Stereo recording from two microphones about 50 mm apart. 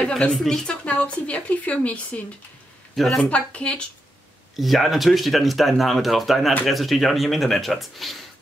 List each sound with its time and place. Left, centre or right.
0.4 s a woman's voice: centre
0.7 s speech: left
3.0 s speech: centre
3.3 s speech: left
4.6 s speech: centre